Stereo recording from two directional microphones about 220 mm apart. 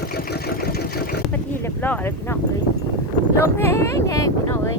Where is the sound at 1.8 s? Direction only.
10° left (ahead or behind).